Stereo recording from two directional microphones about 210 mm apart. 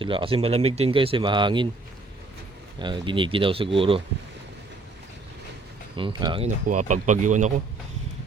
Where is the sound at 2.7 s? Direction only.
20° right (ahead or behind).